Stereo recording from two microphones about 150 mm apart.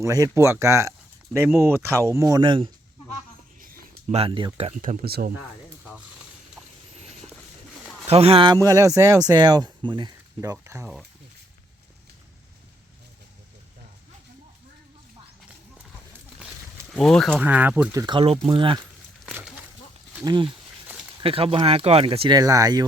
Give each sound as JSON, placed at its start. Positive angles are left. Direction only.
{"t": 0.0, "sound": "speech", "side_deg": -20}
{"t": 4.1, "sound": "speech", "side_deg": -35}
{"t": 4.8, "sound": "speech", "side_deg": -60}
{"t": 8.0, "sound": "speech", "side_deg": -40}
{"t": 8.6, "sound": "speech", "side_deg": -20}
{"t": 16.9, "sound": "speech", "side_deg": 5}
{"t": 17.4, "sound": "speech", "side_deg": -10}
{"t": 17.9, "sound": "speech", "side_deg": -30}
{"t": 20.2, "sound": "speech", "side_deg": -35}
{"t": 22.4, "sound": "speech", "side_deg": -25}